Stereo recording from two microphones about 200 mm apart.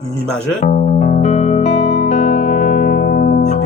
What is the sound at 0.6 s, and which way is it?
Music, 35° left (ahead or behind).